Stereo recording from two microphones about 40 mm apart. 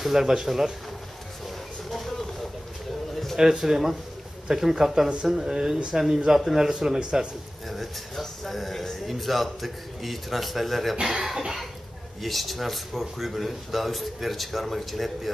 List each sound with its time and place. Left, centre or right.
0.0 s speech: centre
1.9 s vehicle: centre
3.3 s speech: centre
7.0 s speech: right
7.7 s speech: centre